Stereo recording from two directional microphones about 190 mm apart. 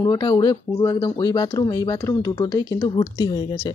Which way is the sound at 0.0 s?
20° left (ahead or behind).